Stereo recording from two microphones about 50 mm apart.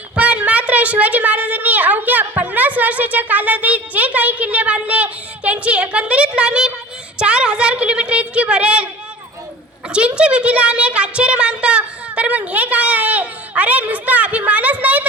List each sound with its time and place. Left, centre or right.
0.2 s a woman's voice: right
9.9 s a woman's voice: right